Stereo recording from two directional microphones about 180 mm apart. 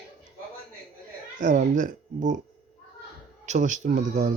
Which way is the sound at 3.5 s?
45° right (ahead or behind).